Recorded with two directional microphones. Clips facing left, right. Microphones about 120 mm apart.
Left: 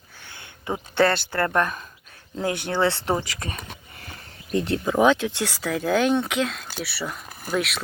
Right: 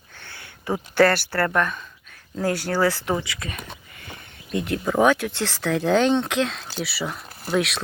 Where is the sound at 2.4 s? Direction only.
20° left (ahead or behind).